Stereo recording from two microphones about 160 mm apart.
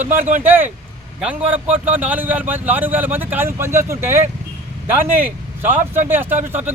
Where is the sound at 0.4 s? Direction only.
10° right (ahead or behind).